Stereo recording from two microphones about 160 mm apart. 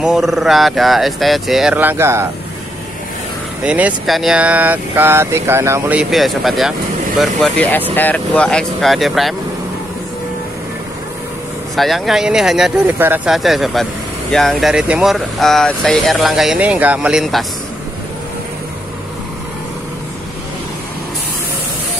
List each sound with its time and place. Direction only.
0.0 s speech: centre (ahead or behind)
3.6 s speech: 10° right (ahead or behind)
5.9 s speech: centre (ahead or behind)
7.6 s speech: 10° left (ahead or behind)
11.7 s speech: centre (ahead or behind)
13.3 s speech: centre (ahead or behind)